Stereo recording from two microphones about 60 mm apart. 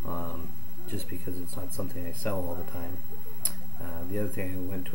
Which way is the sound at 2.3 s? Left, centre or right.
Left.